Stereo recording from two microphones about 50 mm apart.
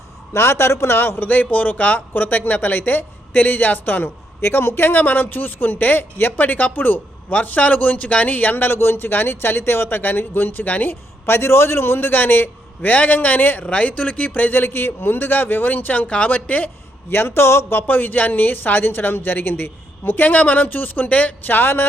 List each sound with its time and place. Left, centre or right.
0.3 s a man's voice: left
0.9 s a man's voice: left
1.3 s speech: left
4.4 s a man's voice: left
11.3 s speech: left
14.4 s a man's voice: left
17.1 s speech: left